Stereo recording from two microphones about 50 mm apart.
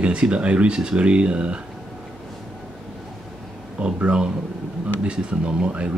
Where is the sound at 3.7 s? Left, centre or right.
Centre.